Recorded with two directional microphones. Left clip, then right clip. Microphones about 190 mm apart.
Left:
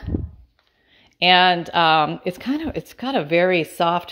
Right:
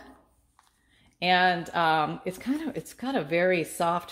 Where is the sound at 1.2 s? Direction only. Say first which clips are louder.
Left 8 dB; 35° left (ahead or behind).